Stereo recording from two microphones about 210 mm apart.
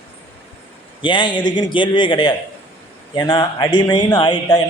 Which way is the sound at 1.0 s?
20° left (ahead or behind).